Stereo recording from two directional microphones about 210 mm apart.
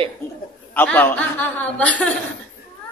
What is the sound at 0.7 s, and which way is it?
A man's voice, 10° left (ahead or behind).